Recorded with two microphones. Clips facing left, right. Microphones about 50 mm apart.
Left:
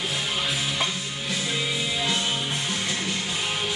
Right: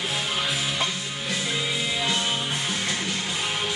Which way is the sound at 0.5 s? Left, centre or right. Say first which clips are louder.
Even; centre.